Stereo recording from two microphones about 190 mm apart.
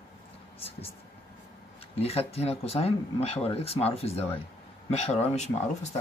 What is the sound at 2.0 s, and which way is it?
Speech, 30° left (ahead or behind).